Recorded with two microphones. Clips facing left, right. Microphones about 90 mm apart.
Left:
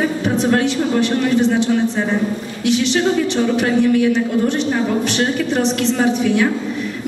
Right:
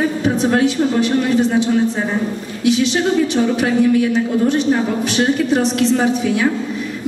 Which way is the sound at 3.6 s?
10° right (ahead or behind).